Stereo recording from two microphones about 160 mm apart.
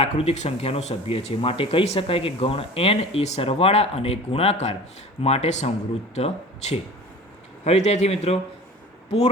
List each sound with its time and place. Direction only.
0.0 s a man's voice: 40° left (ahead or behind)